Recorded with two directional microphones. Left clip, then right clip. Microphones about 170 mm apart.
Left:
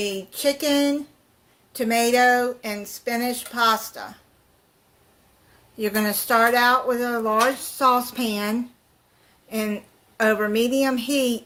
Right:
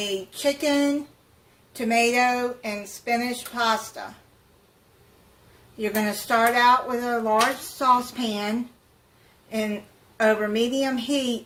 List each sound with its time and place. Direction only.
0.0 s speech: 65° left (ahead or behind)
5.8 s speech: 60° left (ahead or behind)
10.2 s speech: 60° left (ahead or behind)